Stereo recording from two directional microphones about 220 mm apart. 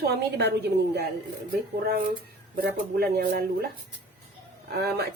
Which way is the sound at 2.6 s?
45° right (ahead or behind).